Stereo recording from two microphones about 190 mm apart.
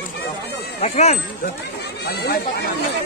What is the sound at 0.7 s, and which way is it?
Speech, 35° left (ahead or behind).